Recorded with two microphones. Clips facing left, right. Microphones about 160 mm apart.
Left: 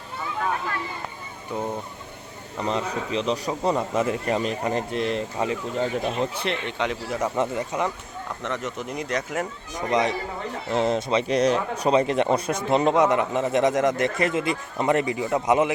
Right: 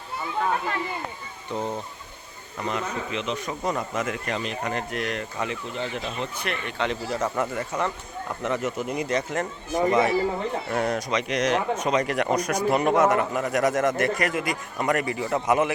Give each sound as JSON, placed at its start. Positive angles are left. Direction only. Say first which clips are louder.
{"t": 1.5, "sound": "speech", "louder": "even", "side_deg": 5}
{"t": 2.6, "sound": "speech", "louder": "left 2 dB", "side_deg": 35}
{"t": 6.3, "sound": "speech", "louder": "left 3 dB", "side_deg": 25}
{"t": 6.8, "sound": "speech", "louder": "right 1 dB", "side_deg": 10}
{"t": 7.3, "sound": "speech", "louder": "left 2 dB", "side_deg": 20}
{"t": 8.4, "sound": "speech", "louder": "right 4 dB", "side_deg": -5}
{"t": 9.9, "sound": "speech", "louder": "left 1 dB", "side_deg": 20}